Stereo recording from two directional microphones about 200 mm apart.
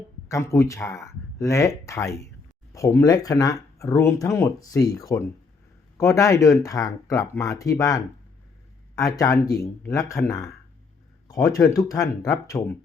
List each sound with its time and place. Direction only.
0.3 s speech: 15° left (ahead or behind)